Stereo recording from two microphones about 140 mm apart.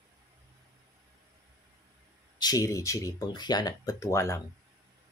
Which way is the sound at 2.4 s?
25° left (ahead or behind).